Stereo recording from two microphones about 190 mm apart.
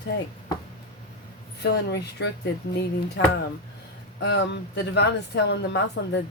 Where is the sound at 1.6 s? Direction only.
60° left (ahead or behind).